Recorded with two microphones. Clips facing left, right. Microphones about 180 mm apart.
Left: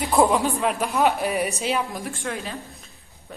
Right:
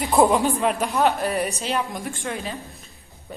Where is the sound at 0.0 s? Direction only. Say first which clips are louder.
Right 1 dB; centre (ahead or behind).